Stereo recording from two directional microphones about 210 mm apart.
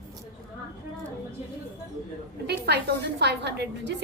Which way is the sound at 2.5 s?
50° right (ahead or behind).